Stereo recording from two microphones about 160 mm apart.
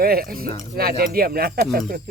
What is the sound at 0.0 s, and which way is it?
Speech, 65° right (ahead or behind).